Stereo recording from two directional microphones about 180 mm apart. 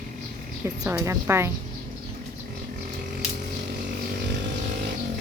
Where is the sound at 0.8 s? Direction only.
15° right (ahead or behind).